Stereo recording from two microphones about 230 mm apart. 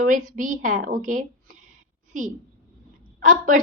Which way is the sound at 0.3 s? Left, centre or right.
Right.